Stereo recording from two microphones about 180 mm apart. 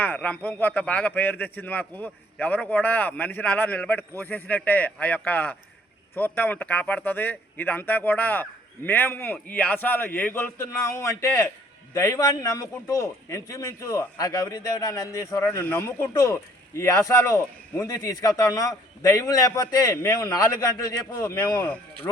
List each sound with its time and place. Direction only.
0.0 s a man's voice: 10° left (ahead or behind)